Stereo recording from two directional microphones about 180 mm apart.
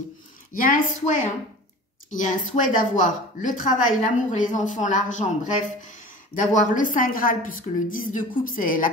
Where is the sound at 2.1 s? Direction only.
45° left (ahead or behind).